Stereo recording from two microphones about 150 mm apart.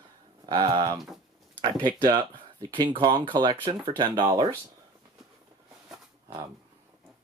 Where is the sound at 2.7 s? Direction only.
30° right (ahead or behind).